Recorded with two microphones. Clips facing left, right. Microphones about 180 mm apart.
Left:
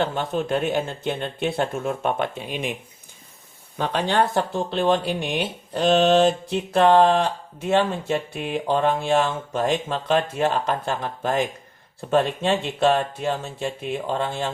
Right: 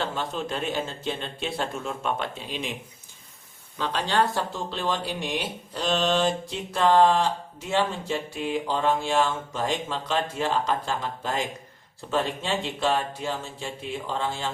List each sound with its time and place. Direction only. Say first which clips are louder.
0.0 s speech: left 5 dB; 55° left (ahead or behind)
3.8 s speech: left 3 dB; 55° left (ahead or behind)